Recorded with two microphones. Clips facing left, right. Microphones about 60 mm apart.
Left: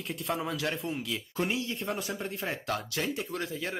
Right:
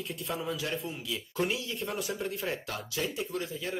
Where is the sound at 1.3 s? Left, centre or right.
Left.